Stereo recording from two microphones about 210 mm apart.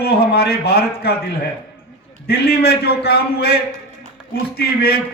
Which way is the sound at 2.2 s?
50° left (ahead or behind).